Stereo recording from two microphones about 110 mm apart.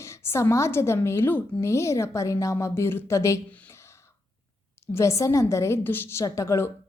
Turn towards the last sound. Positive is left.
turn(degrees=25)  # may be behind; listen again after turning